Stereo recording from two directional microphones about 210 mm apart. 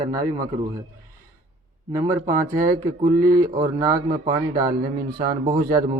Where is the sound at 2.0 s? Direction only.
40° right (ahead or behind).